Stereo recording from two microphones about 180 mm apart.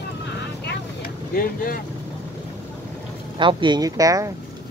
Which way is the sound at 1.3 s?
50° left (ahead or behind).